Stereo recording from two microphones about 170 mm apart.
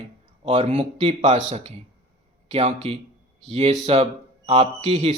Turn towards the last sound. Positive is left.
turn(degrees=-35)  # may be behind; listen again after turning